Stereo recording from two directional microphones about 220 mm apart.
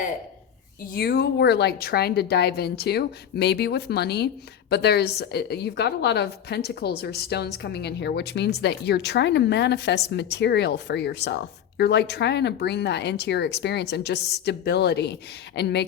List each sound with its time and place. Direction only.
0.9 s a woman's voice: 45° left (ahead or behind)